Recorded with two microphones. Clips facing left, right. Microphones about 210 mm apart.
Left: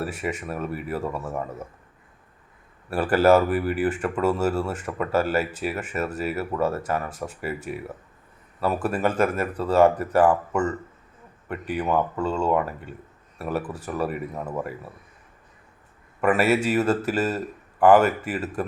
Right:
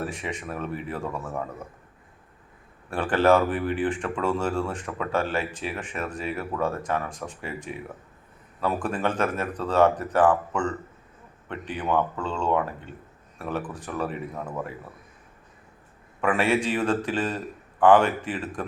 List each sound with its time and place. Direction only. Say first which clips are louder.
0.0 s speech: left 3 dB; 5° left (ahead or behind)
2.9 s speech: left 3 dB; 5° left (ahead or behind)
16.2 s speech: left 3 dB; 5° left (ahead or behind)